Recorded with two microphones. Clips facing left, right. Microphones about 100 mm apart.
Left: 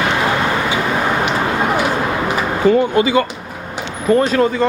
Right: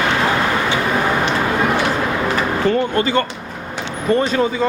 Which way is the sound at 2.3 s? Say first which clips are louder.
Left 5 dB; 10° left (ahead or behind).